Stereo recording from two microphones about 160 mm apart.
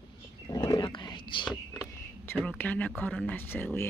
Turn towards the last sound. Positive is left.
turn(degrees=15)  # may be behind; listen again after turning